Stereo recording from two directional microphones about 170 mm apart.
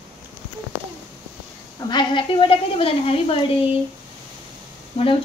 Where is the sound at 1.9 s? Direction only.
30° left (ahead or behind).